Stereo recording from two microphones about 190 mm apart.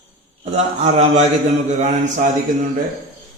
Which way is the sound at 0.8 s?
35° right (ahead or behind).